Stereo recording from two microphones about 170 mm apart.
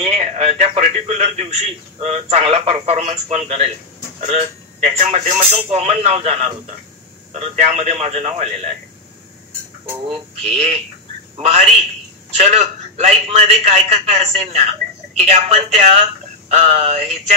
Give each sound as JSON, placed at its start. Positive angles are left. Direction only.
{"t": 0.0, "sound": "a man's voice", "side_deg": -35}
{"t": 10.0, "sound": "a man's voice", "side_deg": -30}